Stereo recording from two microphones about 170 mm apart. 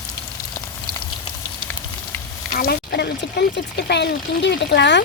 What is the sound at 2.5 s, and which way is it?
Speech, 65° left (ahead or behind).